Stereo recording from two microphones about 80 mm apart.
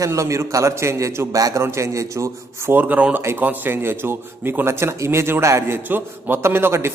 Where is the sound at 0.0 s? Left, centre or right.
Right.